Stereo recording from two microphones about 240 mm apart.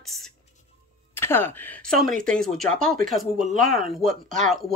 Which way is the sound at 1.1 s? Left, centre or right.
Centre.